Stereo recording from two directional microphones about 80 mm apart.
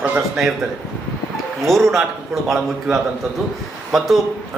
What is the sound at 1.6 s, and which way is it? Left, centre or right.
A man's voice, centre.